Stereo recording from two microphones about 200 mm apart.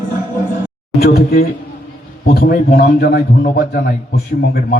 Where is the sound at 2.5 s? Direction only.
50° left (ahead or behind).